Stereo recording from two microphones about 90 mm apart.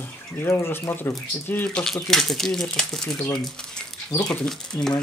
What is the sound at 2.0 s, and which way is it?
Speech, 5° left (ahead or behind).